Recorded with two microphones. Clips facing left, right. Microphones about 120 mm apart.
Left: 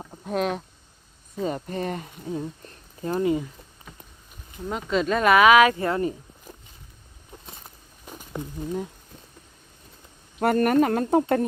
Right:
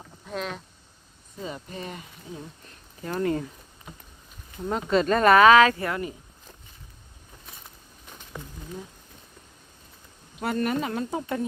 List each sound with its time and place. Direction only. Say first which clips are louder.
0.3 s speech: left 7 dB; 50° left (ahead or behind); by 3.1 s 35° left (ahead or behind)
3.1 s speech: left 3 dB; 15° left (ahead or behind)
4.6 s speech: right 2 dB; centre (ahead or behind); by 6.1 s 25° left (ahead or behind)
8.3 s speech: left 7 dB; 20° left (ahead or behind)
10.4 s speech: left 7 dB; 55° left (ahead or behind)